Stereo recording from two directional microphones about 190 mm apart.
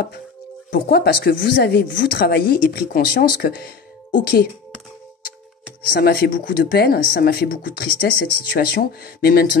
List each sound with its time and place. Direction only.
0.7 s speech: 55° left (ahead or behind)
5.9 s speech: 55° left (ahead or behind)